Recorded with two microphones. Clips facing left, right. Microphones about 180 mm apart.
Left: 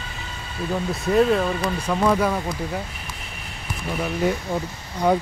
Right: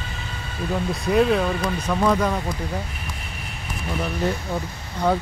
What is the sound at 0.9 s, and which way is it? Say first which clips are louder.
Speech: left 1 dB; centre (ahead or behind).